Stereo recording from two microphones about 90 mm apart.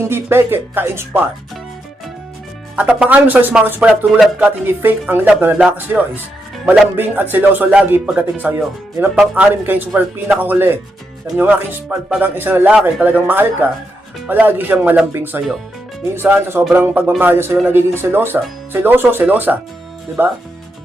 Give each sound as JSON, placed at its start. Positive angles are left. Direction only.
{"t": 0.0, "sound": "speech", "side_deg": -25}
{"t": 2.7, "sound": "speech", "side_deg": -15}
{"t": 4.6, "sound": "speech", "side_deg": -20}